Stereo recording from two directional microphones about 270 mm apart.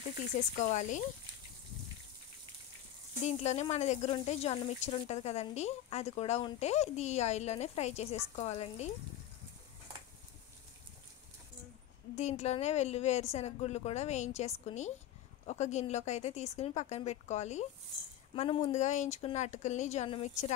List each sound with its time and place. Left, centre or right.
0.4 s speech: left
3.3 s speech: left
12.2 s speech: left